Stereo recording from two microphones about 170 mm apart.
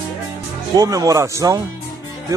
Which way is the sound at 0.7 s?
20° right (ahead or behind).